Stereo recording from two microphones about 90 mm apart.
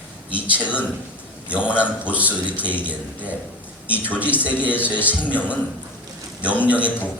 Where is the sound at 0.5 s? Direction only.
20° left (ahead or behind).